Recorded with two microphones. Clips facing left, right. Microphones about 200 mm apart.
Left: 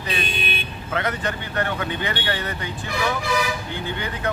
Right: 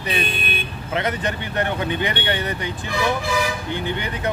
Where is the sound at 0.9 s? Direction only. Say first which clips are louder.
Right 2 dB; 20° right (ahead or behind).